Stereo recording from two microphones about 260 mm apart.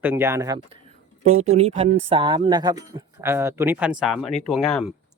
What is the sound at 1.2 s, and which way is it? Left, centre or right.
Speech, right.